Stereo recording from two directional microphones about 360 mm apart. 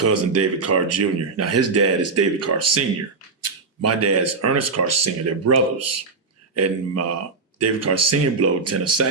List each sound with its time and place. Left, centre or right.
0.0 s speech: right